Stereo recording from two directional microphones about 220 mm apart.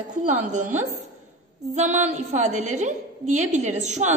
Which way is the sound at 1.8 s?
30° right (ahead or behind).